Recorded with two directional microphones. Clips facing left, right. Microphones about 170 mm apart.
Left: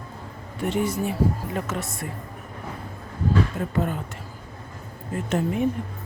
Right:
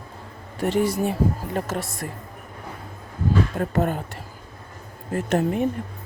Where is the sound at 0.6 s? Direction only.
35° right (ahead or behind).